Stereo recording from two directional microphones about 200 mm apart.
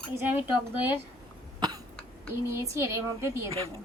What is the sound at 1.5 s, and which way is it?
Cough, 20° right (ahead or behind).